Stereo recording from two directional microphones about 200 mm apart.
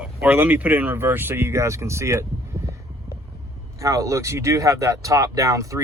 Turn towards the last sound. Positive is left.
turn(degrees=-15)  # may be behind; listen again after turning